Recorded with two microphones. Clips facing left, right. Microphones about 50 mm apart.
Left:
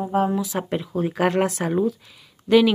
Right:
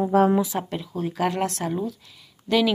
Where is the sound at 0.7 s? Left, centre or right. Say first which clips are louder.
Left 4 dB; centre.